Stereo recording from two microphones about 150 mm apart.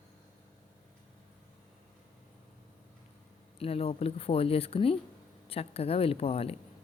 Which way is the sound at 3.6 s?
40° left (ahead or behind).